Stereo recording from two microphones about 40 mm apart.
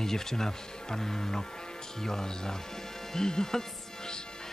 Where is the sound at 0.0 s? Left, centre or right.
Centre.